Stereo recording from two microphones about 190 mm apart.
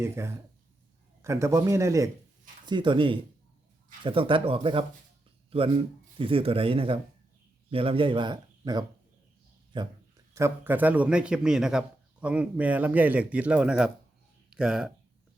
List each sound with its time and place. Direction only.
0.0 s a man's voice: 15° right (ahead or behind)
10.3 s a man's voice: 10° right (ahead or behind)